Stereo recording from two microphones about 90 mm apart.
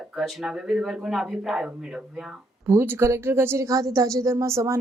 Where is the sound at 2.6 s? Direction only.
25° right (ahead or behind).